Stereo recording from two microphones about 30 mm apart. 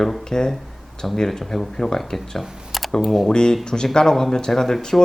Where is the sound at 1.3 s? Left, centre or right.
Centre.